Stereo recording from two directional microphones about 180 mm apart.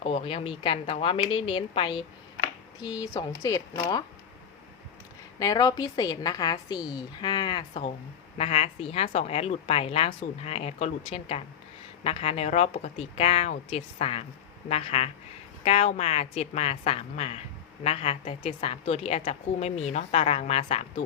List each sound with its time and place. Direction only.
0.0 s a woman's voice: 30° left (ahead or behind)
5.4 s a woman's voice: 20° left (ahead or behind)